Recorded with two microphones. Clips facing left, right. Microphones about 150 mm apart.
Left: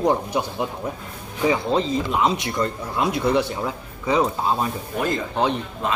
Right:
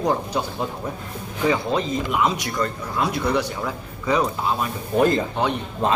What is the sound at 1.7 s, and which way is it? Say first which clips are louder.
Speech: left 1 dB; 30° left (ahead or behind).